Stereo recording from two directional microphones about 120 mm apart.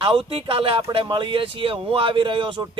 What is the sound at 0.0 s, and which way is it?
Speech, 50° right (ahead or behind).